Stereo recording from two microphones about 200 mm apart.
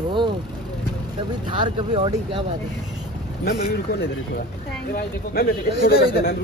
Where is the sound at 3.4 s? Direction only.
55° left (ahead or behind).